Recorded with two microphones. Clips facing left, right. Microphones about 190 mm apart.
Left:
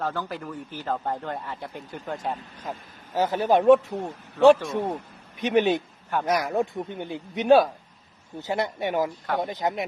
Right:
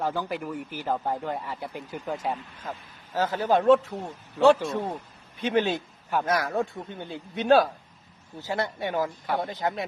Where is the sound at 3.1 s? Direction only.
15° left (ahead or behind).